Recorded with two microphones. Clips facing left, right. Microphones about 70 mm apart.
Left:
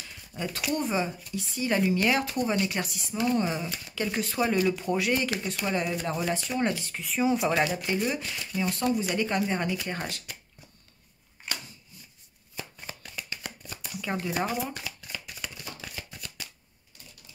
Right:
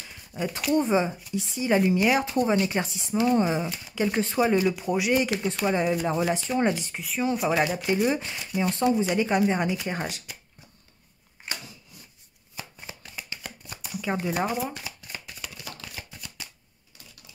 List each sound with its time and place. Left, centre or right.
0.3 s a sound: centre
0.7 s speech: right
5.3 s speech: right
5.7 s speech: centre
7.0 s speech: centre
7.5 s speech: centre
8.1 s speech: right
8.4 s speech: centre
8.6 s speech: right
13.0 s shuffling cards: right
14.1 s speech: centre
14.7 s speech: centre
16.0 s shuffling cards: right